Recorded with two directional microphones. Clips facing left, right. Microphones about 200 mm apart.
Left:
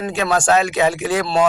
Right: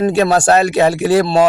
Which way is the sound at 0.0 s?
35° right (ahead or behind).